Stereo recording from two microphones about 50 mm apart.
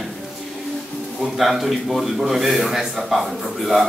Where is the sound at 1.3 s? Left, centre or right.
Centre.